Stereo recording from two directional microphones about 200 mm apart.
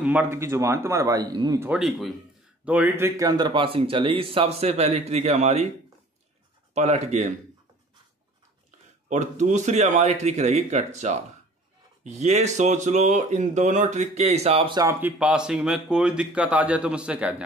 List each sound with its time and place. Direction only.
0.0 s speech: 10° right (ahead or behind)
1.7 s speech: 5° right (ahead or behind); by 5.7 s 35° right (ahead or behind)
6.7 s speech: 35° right (ahead or behind)
9.1 s speech: 35° right (ahead or behind); by 17.4 s 5° right (ahead or behind)